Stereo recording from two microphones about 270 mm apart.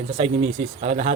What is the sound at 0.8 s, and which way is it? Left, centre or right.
Speech, right.